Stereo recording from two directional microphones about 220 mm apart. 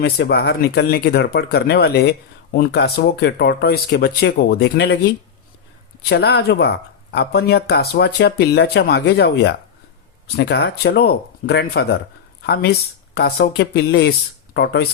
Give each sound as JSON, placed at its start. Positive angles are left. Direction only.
{"t": 0.0, "sound": "speech", "side_deg": 50}
{"t": 6.1, "sound": "speech", "side_deg": 50}